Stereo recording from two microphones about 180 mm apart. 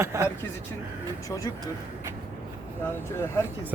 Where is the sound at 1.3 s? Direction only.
20° left (ahead or behind).